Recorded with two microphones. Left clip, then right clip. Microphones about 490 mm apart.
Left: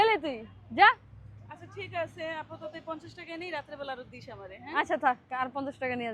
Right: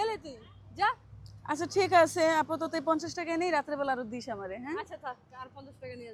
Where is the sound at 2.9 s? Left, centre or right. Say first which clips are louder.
Right 9 dB; right.